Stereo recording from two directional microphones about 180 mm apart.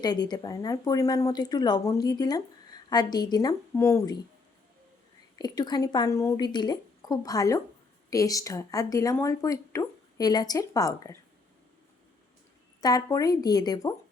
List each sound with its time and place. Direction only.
0.0 s speech: 25° left (ahead or behind)
5.4 s speech: 25° left (ahead or behind)
12.8 s speech: 20° left (ahead or behind)